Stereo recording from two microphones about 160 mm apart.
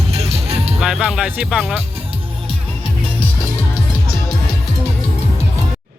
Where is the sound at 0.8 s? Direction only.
Centre (ahead or behind).